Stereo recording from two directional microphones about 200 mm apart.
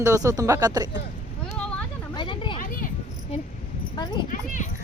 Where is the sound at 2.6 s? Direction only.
45° left (ahead or behind).